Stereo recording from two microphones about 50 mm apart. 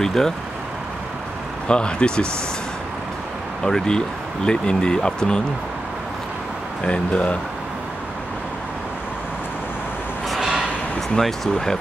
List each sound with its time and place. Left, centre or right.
0.0 s speech: centre
1.7 s speech: centre
3.6 s speech: centre
6.8 s speech: left
10.3 s a sound: centre
11.1 s speech: centre